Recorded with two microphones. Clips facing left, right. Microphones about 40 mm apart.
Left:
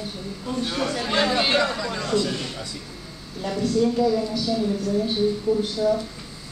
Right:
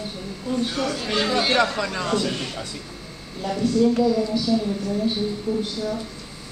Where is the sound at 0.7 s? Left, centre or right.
Centre.